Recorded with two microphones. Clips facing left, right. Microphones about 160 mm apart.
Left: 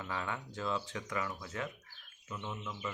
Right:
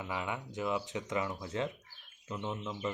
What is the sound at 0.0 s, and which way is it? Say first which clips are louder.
Speech: right 2 dB; 15° right (ahead or behind).